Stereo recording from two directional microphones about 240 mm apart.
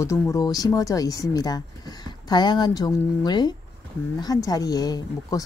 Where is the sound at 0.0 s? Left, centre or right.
Centre.